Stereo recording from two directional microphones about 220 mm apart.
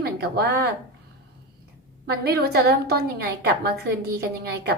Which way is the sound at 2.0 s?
45° right (ahead or behind).